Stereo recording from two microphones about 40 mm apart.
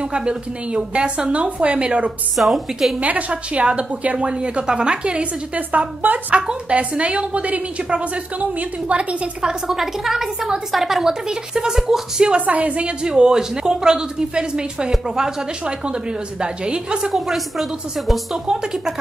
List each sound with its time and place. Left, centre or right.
0.0 s speech: right
2.3 s a woman's voice: centre
3.0 s a woman's voice: right
4.3 s speech: right
5.7 s a woman's voice: right
9.7 s a woman's voice: centre
12.4 s a woman's voice: right
13.1 s speech: centre
17.1 s a woman's voice: centre
18.5 s a woman's voice: centre